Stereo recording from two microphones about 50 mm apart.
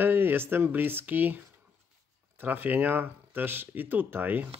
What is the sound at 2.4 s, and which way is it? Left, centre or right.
Speech, right.